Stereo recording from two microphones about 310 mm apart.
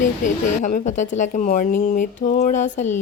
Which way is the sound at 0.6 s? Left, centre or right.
Left.